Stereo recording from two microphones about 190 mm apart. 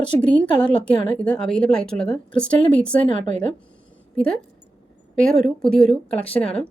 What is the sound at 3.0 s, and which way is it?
Speech, 40° right (ahead or behind).